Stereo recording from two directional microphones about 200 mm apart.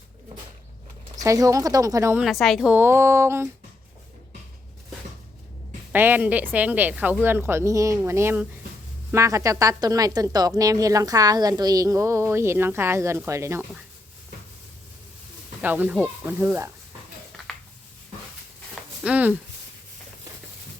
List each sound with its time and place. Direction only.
1.1 s a woman's voice: 15° right (ahead or behind)
2.2 s a woman's voice: centre (ahead or behind)
2.7 s a woman's voice: 10° right (ahead or behind)
5.9 s a woman's voice: 10° right (ahead or behind)
15.6 s a woman's voice: 10° right (ahead or behind)
19.0 s a woman's voice: 5° right (ahead or behind)